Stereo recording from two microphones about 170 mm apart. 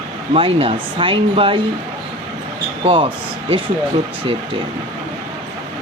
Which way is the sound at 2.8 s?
30° right (ahead or behind).